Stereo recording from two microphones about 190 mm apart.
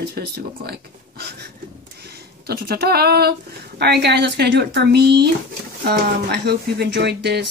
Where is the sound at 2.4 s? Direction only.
55° right (ahead or behind).